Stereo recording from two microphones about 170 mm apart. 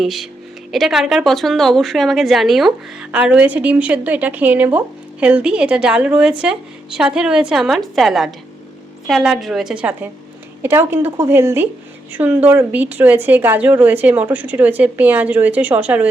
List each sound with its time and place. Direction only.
0.0 s a woman's voice: centre (ahead or behind)